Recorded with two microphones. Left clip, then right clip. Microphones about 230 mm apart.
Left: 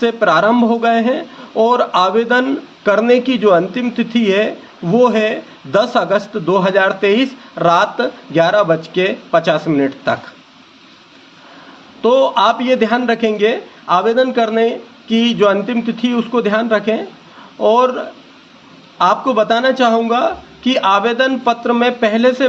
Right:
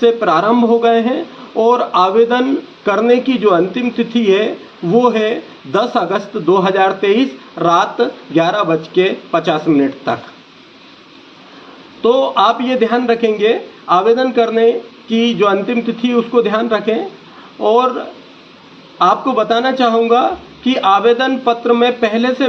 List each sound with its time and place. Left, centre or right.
0.0 s speech: left
9.0 s speech: left
12.0 s speech: left
19.0 s speech: left